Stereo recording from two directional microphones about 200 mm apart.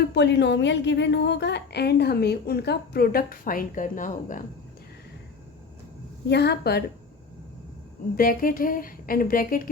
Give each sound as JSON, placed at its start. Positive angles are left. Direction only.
{"t": 0.1, "sound": "a woman's voice", "side_deg": 60}
{"t": 6.2, "sound": "a woman's voice", "side_deg": 55}
{"t": 8.1, "sound": "a woman's voice", "side_deg": 45}